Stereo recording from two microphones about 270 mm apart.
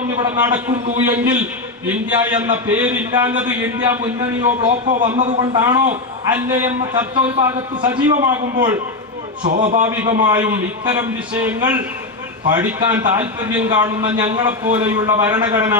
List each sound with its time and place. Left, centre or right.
0.3 s a man's voice: centre
4.6 s a man's voice: right; by 6.7 s centre
7.3 s a man's voice: centre
9.4 s a man's voice: right
9.9 s a man's voice: centre